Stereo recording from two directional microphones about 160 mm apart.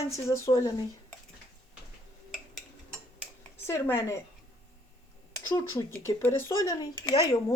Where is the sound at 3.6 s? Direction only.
15° left (ahead or behind).